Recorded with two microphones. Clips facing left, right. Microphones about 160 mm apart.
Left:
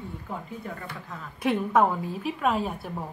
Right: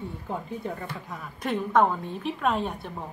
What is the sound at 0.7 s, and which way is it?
Speech, 25° right (ahead or behind).